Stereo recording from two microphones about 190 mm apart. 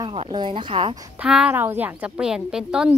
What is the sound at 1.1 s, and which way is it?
A woman's voice, 5° right (ahead or behind).